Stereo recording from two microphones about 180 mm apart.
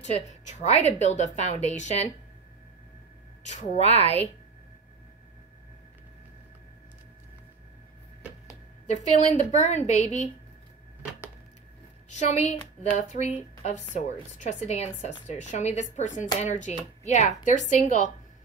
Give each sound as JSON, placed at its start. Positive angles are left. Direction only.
{"t": 0.0, "sound": "a woman's voice", "side_deg": 40}
{"t": 3.4, "sound": "a woman's voice", "side_deg": 35}
{"t": 8.8, "sound": "a woman's voice", "side_deg": 40}
{"t": 12.1, "sound": "a woman's voice", "side_deg": 40}